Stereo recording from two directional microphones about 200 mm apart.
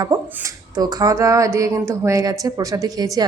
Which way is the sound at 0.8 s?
20° right (ahead or behind).